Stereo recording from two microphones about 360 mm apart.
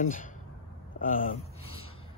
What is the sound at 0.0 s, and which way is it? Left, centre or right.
Speech, left.